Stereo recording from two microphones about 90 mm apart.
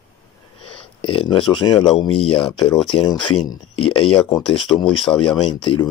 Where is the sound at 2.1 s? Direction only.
90° left.